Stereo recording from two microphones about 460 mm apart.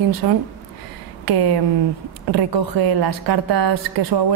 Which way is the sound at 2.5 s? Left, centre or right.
Right.